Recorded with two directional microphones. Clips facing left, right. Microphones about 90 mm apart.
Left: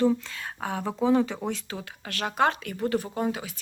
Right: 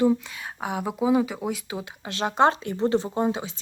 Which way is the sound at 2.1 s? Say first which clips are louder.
Right 4 dB; 20° right (ahead or behind).